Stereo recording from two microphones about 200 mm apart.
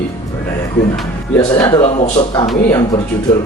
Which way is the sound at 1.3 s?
20° left (ahead or behind).